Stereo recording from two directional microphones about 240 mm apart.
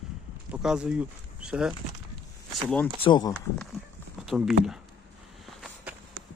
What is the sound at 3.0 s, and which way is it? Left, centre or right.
Speech, centre.